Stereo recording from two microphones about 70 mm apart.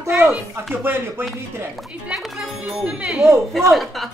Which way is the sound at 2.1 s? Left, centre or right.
Centre.